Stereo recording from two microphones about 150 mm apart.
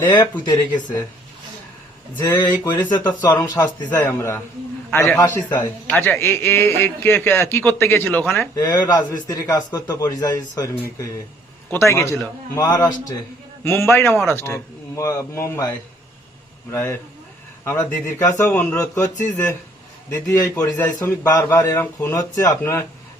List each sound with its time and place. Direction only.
2.2 s a man's voice: 25° left (ahead or behind)
3.8 s a man's voice: 15° left (ahead or behind)
16.7 s a man's voice: 20° left (ahead or behind)